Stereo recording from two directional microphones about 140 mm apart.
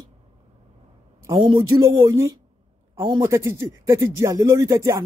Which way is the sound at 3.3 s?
20° right (ahead or behind).